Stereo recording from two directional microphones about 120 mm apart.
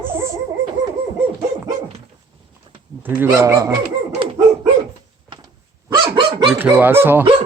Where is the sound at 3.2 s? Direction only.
30° right (ahead or behind).